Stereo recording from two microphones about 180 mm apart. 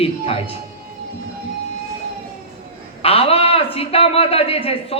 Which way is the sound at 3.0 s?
30° left (ahead or behind).